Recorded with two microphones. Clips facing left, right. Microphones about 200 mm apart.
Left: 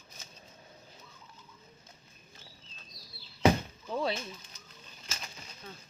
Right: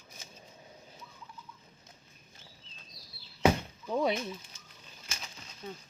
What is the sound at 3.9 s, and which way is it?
Speech, 15° right (ahead or behind).